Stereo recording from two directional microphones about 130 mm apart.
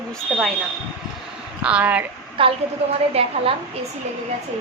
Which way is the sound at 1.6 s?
10° right (ahead or behind).